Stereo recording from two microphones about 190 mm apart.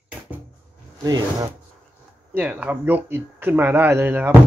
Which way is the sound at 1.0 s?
20° right (ahead or behind).